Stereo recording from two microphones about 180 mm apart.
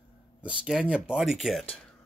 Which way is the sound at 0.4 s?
5° right (ahead or behind).